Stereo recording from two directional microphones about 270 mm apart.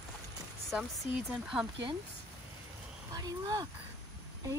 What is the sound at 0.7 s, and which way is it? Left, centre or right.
Speech, centre.